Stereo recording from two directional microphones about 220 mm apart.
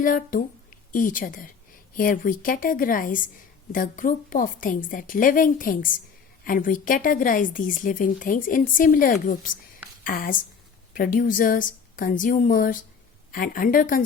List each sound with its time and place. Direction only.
0.0 s a woman's voice: 40° left (ahead or behind)